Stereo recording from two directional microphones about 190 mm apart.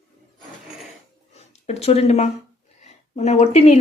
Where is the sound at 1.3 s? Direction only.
35° left (ahead or behind).